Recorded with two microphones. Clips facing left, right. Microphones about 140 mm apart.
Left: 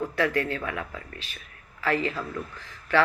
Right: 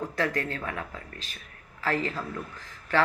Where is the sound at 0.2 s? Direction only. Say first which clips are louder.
Left 3 dB; 40° right (ahead or behind).